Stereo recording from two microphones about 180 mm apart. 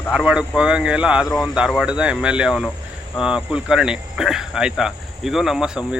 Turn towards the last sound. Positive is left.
turn(degrees=-5)  # may be behind; listen again after turning